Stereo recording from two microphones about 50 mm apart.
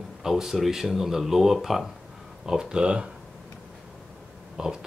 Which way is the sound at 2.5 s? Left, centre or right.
Centre.